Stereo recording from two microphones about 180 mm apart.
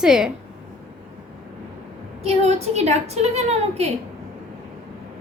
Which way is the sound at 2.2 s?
35° right (ahead or behind).